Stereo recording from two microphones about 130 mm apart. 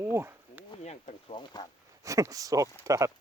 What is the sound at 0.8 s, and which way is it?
Speech, 55° left (ahead or behind).